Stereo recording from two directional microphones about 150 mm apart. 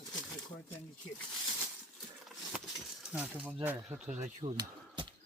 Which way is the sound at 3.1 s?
10° right (ahead or behind).